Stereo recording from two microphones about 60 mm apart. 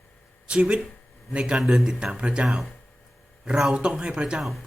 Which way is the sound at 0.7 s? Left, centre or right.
Centre.